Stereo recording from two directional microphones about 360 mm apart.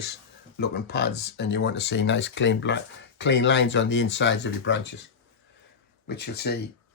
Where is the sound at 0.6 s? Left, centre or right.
Left.